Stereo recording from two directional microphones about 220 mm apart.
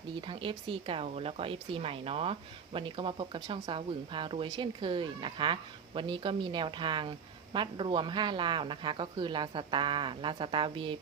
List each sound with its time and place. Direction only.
0.2 s speech: 20° right (ahead or behind)